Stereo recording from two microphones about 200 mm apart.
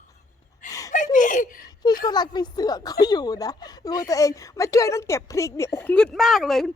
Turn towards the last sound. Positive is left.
turn(degrees=0)  # may be behind; listen again after turning